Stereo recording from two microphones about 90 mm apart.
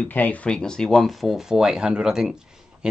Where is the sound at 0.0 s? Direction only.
15° left (ahead or behind).